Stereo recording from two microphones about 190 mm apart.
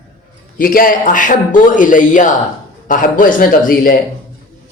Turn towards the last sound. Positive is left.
turn(degrees=45)  # may be behind; listen again after turning